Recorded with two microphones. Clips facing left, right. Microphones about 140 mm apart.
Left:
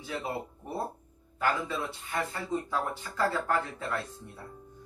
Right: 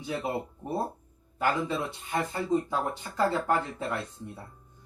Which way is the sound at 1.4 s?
20° right (ahead or behind).